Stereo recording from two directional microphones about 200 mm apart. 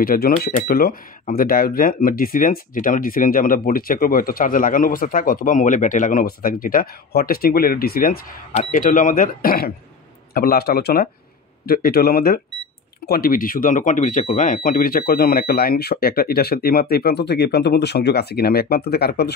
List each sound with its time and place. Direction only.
0.0 s speech: 50° left (ahead or behind)